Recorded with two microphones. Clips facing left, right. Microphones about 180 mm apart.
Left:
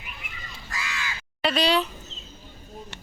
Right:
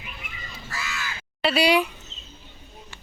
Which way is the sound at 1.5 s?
10° right (ahead or behind).